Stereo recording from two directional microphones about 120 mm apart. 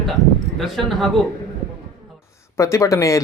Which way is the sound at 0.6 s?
Centre (ahead or behind).